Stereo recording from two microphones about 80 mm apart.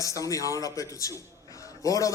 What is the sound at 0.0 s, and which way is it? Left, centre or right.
A man's voice, left.